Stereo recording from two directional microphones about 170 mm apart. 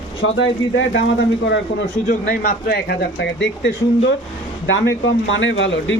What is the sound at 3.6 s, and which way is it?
Speech, 90° left.